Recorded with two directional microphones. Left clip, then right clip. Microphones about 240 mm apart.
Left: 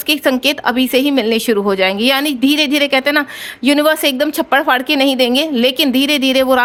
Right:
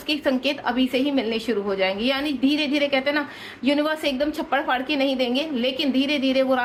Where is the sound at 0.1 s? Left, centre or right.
Left.